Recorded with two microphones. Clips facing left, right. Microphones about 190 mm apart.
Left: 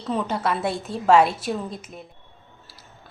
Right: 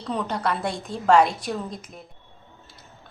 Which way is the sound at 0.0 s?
5° left (ahead or behind).